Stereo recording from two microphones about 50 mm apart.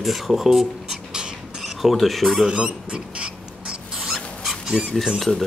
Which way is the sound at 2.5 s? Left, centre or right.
Centre.